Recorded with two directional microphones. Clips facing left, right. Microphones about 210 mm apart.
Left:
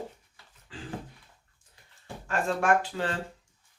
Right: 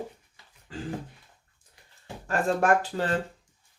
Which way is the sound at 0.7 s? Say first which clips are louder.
Right 6 dB; 45° right (ahead or behind).